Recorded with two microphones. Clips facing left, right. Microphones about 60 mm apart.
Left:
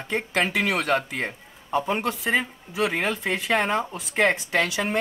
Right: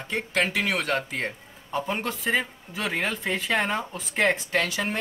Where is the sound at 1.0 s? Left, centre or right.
Left.